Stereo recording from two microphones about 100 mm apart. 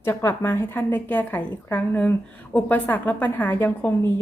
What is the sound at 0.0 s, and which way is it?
A woman's voice, 25° left (ahead or behind).